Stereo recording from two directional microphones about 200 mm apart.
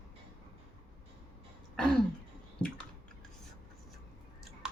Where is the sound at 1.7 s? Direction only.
Centre (ahead or behind).